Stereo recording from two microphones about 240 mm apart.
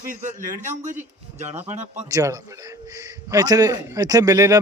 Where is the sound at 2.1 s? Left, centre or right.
Centre.